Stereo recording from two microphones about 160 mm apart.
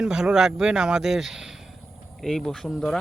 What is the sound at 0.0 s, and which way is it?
A man's voice, 5° right (ahead or behind).